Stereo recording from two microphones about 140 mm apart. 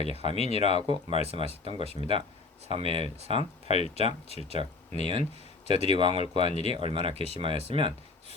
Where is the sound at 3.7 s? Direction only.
50° left (ahead or behind).